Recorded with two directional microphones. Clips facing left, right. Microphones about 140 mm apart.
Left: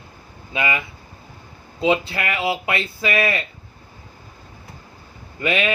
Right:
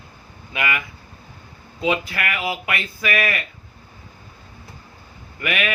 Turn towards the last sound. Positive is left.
turn(degrees=25)  # may be behind; listen again after turning